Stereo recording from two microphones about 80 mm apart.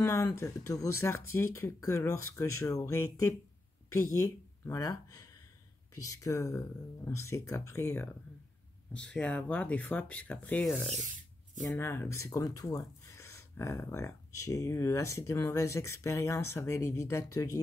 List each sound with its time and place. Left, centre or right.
0.0 s speech: left
8.9 s speech: centre
11.7 s speech: left
12.3 s speech: left